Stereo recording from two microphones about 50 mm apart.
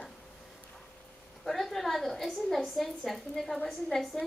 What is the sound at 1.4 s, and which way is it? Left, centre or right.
A woman's voice, centre.